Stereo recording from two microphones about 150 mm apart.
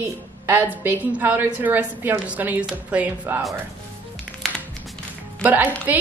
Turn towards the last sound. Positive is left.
turn(degrees=-10)  # may be behind; listen again after turning